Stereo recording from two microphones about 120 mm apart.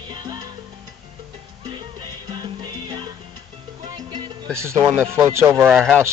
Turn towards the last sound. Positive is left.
turn(degrees=-5)  # may be behind; listen again after turning